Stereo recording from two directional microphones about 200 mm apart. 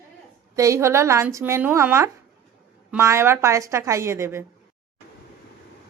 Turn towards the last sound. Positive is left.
turn(degrees=-15)  # may be behind; listen again after turning